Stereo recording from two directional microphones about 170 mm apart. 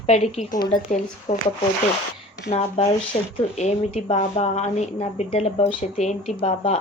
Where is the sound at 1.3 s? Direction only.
45° left (ahead or behind).